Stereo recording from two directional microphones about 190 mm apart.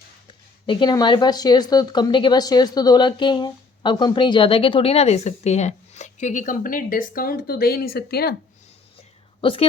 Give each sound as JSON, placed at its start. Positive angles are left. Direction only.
{"t": 0.3, "sound": "speech", "side_deg": 25}
{"t": 9.4, "sound": "a woman's voice", "side_deg": 30}